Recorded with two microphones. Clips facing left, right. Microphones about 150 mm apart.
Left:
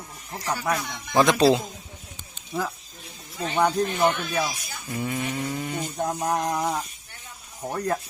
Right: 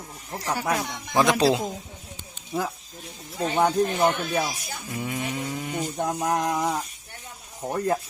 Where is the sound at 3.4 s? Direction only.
20° right (ahead or behind).